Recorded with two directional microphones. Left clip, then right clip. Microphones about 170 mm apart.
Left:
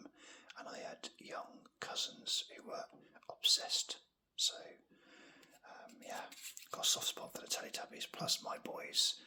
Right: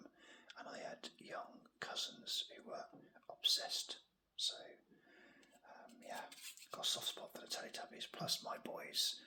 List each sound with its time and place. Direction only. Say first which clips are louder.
0.0 s whispering: left 4 dB; 25° left (ahead or behind)
3.2 s speech: left 4 dB; 20° left (ahead or behind)